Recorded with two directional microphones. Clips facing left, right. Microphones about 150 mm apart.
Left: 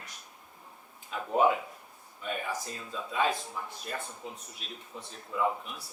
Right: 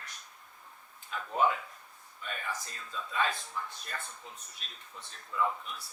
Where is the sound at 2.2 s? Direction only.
15° left (ahead or behind).